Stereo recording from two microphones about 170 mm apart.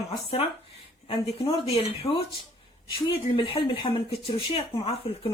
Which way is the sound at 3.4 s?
35° left (ahead or behind).